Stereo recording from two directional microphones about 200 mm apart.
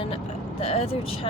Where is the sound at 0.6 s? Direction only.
30° left (ahead or behind).